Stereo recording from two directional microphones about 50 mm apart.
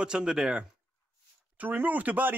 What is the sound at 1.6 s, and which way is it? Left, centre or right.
Speech, right.